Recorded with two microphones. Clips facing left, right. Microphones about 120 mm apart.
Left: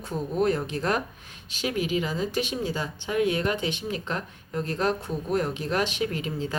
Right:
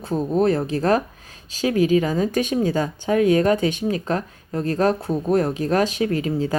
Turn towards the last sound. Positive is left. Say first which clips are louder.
# right 8 dB
turn(degrees=-40)  # may be behind; listen again after turning